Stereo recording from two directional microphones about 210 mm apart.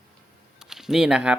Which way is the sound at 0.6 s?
Centre (ahead or behind).